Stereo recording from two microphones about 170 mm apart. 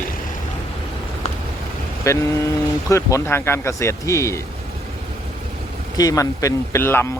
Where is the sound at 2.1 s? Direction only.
15° left (ahead or behind).